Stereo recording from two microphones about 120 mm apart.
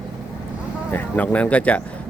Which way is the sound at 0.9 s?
15° left (ahead or behind).